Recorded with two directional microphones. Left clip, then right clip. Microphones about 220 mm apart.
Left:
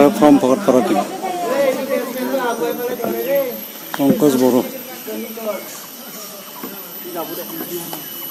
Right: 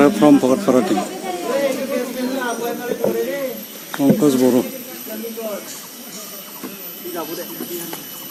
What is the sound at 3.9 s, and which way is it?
Speech, centre (ahead or behind).